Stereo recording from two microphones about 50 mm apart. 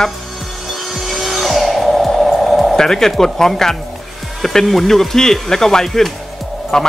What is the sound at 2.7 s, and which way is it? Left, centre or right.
Speech, centre.